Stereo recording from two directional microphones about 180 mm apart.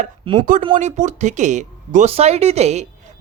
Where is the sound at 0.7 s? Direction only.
40° right (ahead or behind).